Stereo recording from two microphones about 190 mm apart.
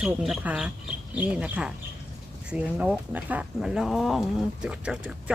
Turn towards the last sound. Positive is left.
turn(degrees=-5)  # may be behind; listen again after turning